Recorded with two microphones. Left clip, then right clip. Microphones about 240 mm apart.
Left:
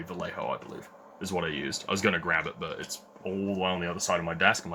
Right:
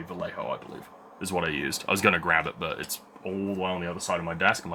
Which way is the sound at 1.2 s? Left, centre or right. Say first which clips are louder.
Right 3 dB; centre.